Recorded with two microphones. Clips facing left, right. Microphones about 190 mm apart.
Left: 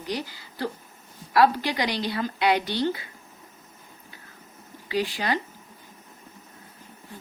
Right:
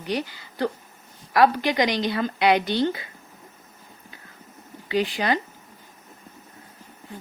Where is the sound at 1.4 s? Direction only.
15° right (ahead or behind).